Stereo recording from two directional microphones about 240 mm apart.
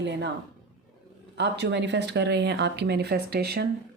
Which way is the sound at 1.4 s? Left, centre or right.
Right.